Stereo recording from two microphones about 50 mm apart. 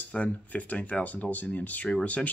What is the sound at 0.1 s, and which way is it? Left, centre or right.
Speech, left.